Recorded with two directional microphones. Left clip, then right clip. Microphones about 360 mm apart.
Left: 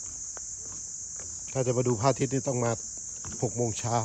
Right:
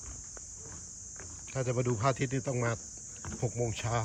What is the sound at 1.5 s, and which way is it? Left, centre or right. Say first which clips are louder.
Speech: left 5 dB; centre.